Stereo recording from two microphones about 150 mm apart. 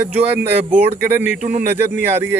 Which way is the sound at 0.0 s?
10° right (ahead or behind).